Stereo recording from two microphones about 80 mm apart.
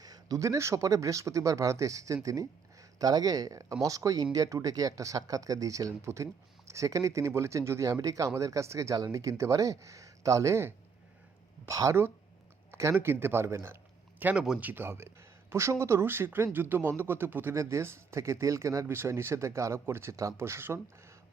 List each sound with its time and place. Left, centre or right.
0.0 s speech: right
14.3 s speech: centre
14.6 s speech: right
17.5 s speech: right